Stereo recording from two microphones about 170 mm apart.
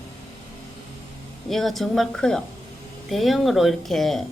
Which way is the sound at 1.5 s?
Centre (ahead or behind).